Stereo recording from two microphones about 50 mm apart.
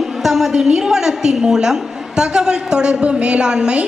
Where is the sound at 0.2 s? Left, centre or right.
Centre.